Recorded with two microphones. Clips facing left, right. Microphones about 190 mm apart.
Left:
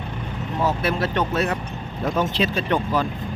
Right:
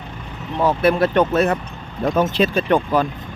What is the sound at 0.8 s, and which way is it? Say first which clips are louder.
Speech: right 7 dB; 55° right (ahead or behind).